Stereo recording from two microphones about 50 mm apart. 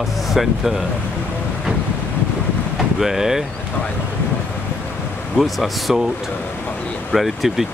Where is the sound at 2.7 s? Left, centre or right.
Centre.